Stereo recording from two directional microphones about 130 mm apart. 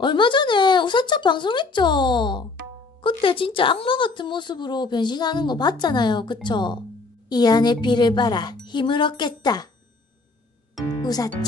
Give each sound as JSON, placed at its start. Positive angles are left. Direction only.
{"t": 0.0, "sound": "speech", "side_deg": 35}
{"t": 11.0, "sound": "music", "side_deg": 30}